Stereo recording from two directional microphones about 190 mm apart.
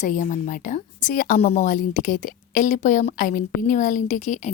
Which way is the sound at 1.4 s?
35° left (ahead or behind).